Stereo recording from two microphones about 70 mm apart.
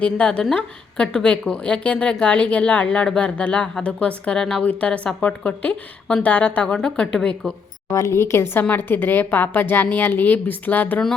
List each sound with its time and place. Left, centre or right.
0.0 s a woman's voice: centre
7.9 s a woman's voice: left